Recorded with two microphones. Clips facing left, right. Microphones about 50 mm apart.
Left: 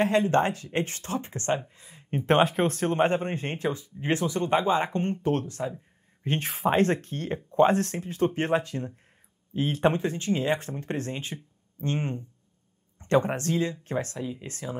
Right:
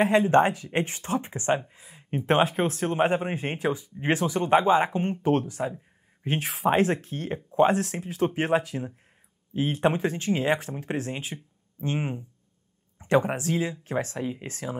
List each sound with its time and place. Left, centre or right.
0.0 s a man's voice: centre
9.9 s a man's voice: right
13.9 s speech: right
14.4 s speech: centre